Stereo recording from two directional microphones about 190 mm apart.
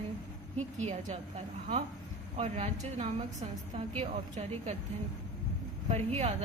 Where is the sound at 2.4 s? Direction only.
35° right (ahead or behind).